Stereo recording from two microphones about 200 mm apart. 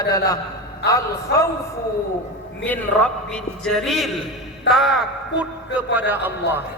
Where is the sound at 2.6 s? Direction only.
5° left (ahead or behind).